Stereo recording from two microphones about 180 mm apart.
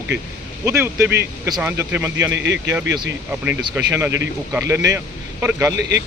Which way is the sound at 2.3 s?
85° right.